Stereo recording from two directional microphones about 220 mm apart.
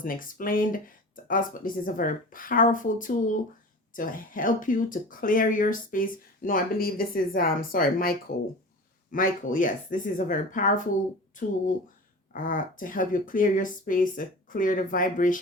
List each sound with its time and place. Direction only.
0.0 s speech: 40° left (ahead or behind)
9.1 s speech: 40° left (ahead or behind)